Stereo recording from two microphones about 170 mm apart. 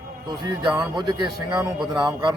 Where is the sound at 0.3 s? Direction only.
25° right (ahead or behind).